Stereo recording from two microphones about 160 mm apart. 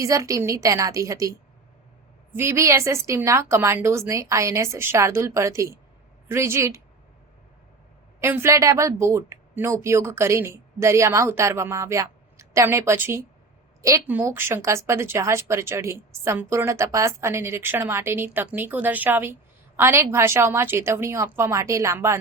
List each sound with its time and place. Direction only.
0.0 s a woman's voice: 20° right (ahead or behind)
8.2 s a woman's voice: 15° right (ahead or behind)